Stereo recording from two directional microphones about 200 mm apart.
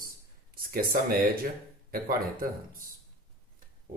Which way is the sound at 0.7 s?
45° right (ahead or behind).